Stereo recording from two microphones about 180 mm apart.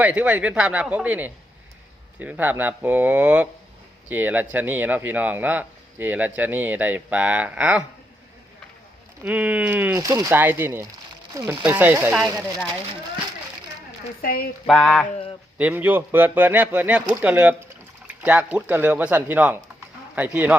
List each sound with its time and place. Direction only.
0.0 s speech: 5° right (ahead or behind)
9.2 s speech: 10° right (ahead or behind)
14.2 s speech: 55° left (ahead or behind)
14.7 s a sound: 5° left (ahead or behind)
15.5 s speech: 10° right (ahead or behind)